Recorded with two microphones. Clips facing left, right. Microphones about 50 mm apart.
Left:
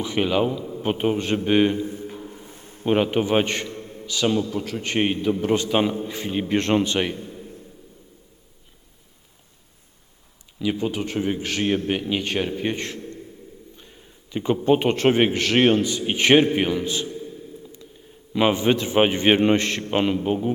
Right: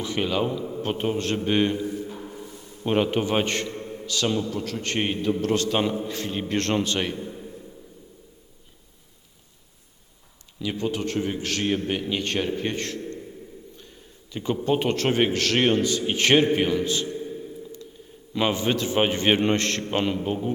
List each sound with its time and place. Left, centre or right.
0.0 s a man's voice: centre
1.8 s a man's voice: left
2.4 s a sound: left
2.8 s a man's voice: centre
3.7 s mantra: right
4.0 s a man's voice: centre
10.6 s a man's voice: centre
18.3 s a man's voice: centre